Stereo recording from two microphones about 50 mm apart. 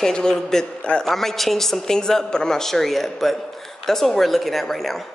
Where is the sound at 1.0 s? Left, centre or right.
Centre.